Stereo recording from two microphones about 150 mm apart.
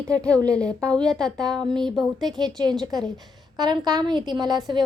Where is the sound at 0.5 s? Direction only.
5° left (ahead or behind).